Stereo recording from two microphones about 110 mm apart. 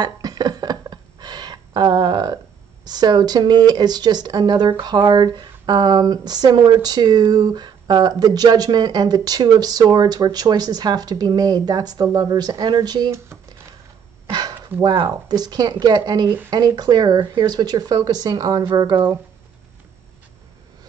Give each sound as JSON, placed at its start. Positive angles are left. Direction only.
{"t": 0.0, "sound": "speech", "side_deg": -35}
{"t": 15.2, "sound": "speech", "side_deg": -35}